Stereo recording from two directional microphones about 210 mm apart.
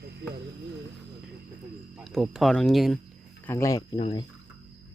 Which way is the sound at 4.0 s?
25° left (ahead or behind).